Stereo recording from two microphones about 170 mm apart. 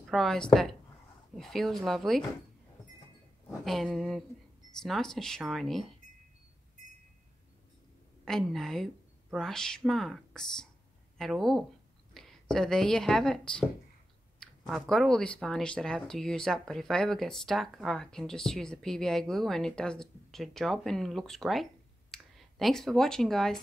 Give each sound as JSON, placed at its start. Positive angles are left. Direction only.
{"t": 0.0, "sound": "speech", "side_deg": 0}
{"t": 3.6, "sound": "speech", "side_deg": 0}
{"t": 8.3, "sound": "a woman's voice", "side_deg": 0}